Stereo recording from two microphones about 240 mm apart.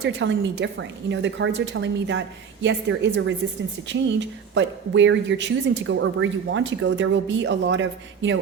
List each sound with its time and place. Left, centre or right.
0.0 s speech: right